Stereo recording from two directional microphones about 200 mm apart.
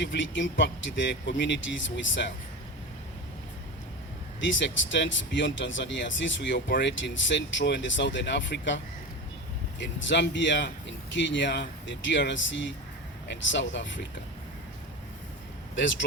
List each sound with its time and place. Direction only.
0.0 s speech: 65° left (ahead or behind)
4.4 s speech: 65° left (ahead or behind)
15.7 s speech: 65° left (ahead or behind)